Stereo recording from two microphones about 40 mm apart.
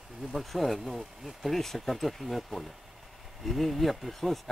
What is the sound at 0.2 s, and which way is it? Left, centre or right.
Speech, centre.